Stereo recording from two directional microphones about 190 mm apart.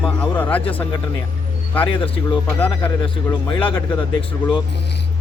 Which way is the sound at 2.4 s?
10° left (ahead or behind).